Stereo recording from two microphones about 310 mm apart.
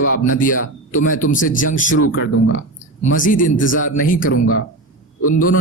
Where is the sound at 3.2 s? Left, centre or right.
Left.